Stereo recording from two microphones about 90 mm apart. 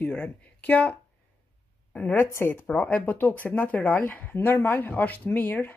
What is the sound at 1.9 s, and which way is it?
A woman's voice, 20° left (ahead or behind).